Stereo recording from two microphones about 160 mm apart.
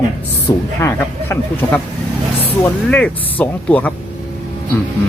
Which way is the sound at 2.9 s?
10° left (ahead or behind).